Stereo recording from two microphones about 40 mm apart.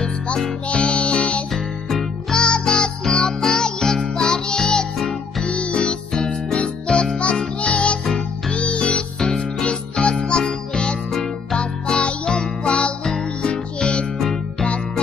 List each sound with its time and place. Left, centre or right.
0.7 s music: left
1.5 s music: centre
2.3 s music: centre
8.0 s music: centre
8.5 s music: left
14.1 s music: centre